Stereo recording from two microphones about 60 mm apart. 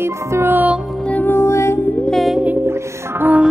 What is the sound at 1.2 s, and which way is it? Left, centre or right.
Music, left.